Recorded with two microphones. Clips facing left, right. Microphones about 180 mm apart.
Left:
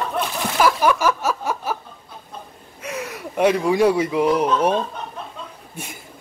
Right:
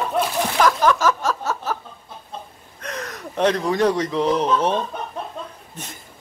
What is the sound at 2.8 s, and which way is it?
Speech, 10° left (ahead or behind).